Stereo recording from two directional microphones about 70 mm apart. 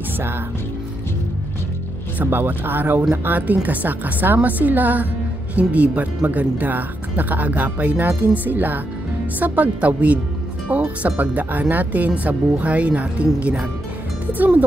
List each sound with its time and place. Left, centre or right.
2.2 s speech: right